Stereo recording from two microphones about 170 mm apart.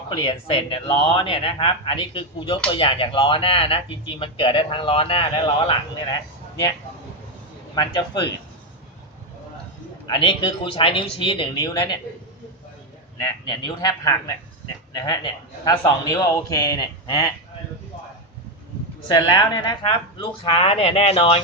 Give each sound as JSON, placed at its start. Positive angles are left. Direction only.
{"t": 0.1, "sound": "speech", "side_deg": 30}
{"t": 7.8, "sound": "a man's voice", "side_deg": 25}
{"t": 10.1, "sound": "speech", "side_deg": 30}
{"t": 13.2, "sound": "a man's voice", "side_deg": 25}
{"t": 19.0, "sound": "speech", "side_deg": 25}